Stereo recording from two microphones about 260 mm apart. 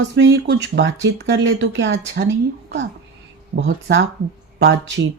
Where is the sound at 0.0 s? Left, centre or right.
Right.